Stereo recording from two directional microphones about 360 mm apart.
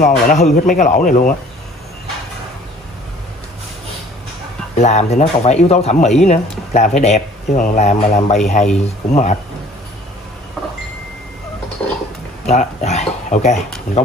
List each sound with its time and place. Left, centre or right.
0.0 s speech: left
4.7 s speech: centre
11.8 s a sound: centre
12.4 s speech: centre